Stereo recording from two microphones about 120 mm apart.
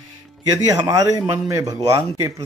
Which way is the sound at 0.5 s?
30° right (ahead or behind).